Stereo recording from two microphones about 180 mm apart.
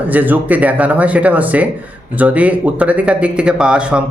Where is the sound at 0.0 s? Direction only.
10° right (ahead or behind).